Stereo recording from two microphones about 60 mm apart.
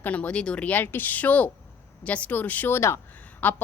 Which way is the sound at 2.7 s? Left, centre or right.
Left.